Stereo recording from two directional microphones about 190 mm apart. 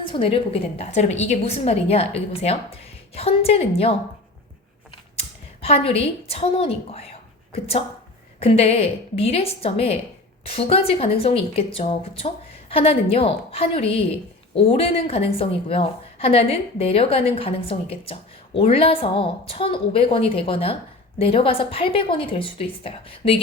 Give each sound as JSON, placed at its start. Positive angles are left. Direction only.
{"t": 0.0, "sound": "a woman's voice", "side_deg": 25}
{"t": 5.6, "sound": "a woman's voice", "side_deg": 30}